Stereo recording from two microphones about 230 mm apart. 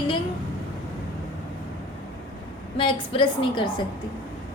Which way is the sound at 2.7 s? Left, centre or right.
Left.